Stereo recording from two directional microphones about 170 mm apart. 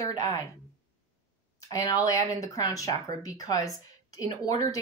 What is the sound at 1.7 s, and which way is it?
Speech, 20° left (ahead or behind).